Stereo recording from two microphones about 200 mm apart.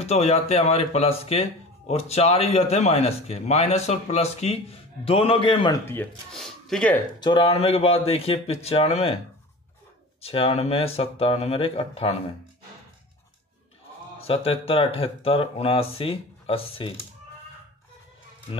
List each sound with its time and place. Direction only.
0.0 s speech: 30° left (ahead or behind)
5.9 s speech: 5° left (ahead or behind)
7.2 s speech: 25° left (ahead or behind)
10.2 s speech: 30° left (ahead or behind)
14.2 s speech: 30° left (ahead or behind)